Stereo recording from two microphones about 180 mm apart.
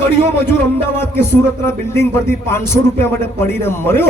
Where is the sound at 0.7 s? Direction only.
15° left (ahead or behind).